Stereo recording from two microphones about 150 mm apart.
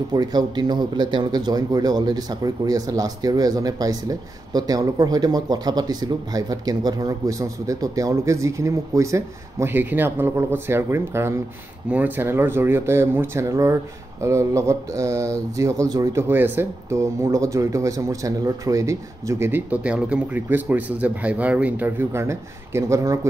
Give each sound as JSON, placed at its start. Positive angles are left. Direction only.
{"t": 0.1, "sound": "speech", "side_deg": -25}